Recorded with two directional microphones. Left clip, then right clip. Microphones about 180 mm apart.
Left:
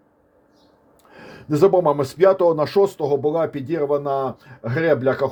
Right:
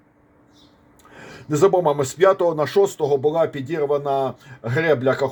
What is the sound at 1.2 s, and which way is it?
Speech, 30° left (ahead or behind).